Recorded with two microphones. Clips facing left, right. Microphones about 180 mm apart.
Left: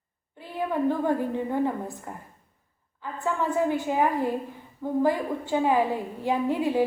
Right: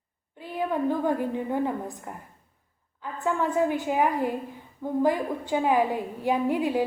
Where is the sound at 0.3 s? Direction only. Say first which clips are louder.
Even; 15° right (ahead or behind).